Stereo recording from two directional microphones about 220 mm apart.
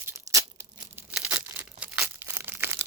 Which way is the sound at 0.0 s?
15° right (ahead or behind).